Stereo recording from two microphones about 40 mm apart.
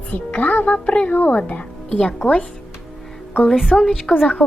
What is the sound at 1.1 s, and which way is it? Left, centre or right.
Speech, left.